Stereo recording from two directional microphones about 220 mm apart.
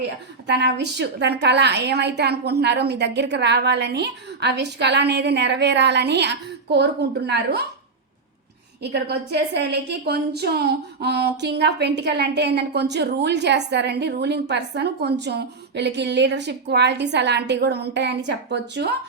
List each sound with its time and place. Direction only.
0.4 s a woman's voice: 50° right (ahead or behind)
8.8 s a woman's voice: 50° right (ahead or behind)